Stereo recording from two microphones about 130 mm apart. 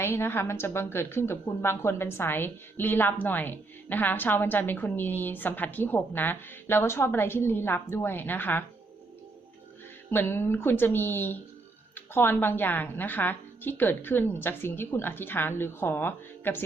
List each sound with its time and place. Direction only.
0.0 s a woman's voice: 20° left (ahead or behind)
10.1 s a woman's voice: 15° left (ahead or behind)